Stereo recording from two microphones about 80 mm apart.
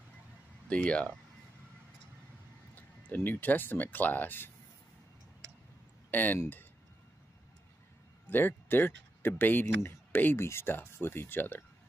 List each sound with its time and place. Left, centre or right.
0.7 s speech: centre
2.7 s speech: left
6.0 s speech: left
8.3 s speech: left